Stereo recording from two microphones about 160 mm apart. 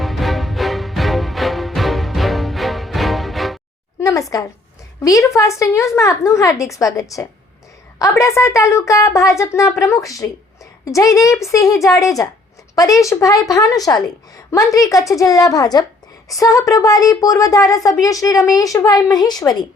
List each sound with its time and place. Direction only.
0.0 s music: centre (ahead or behind)
4.0 s a woman's voice: 20° left (ahead or behind)